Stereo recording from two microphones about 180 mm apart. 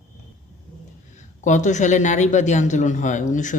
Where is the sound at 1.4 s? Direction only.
40° left (ahead or behind).